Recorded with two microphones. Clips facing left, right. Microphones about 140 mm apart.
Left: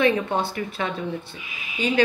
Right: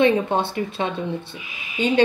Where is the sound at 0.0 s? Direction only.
25° right (ahead or behind).